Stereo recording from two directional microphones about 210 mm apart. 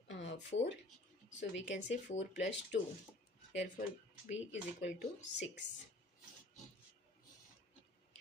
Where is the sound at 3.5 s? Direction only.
55° left (ahead or behind).